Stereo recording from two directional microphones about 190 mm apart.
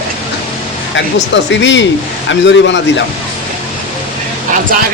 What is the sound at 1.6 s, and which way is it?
Speech, 70° left (ahead or behind).